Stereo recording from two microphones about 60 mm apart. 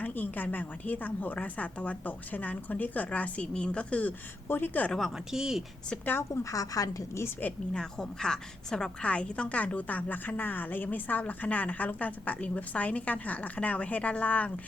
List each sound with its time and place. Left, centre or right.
0.0 s a woman's voice: left
4.4 s a woman's voice: left
4.9 s a woman's voice: centre
5.1 s speech: centre
6.3 s a woman's voice: left
7.7 s a woman's voice: centre